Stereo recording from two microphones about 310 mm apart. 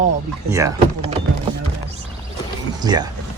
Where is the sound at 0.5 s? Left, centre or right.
Centre.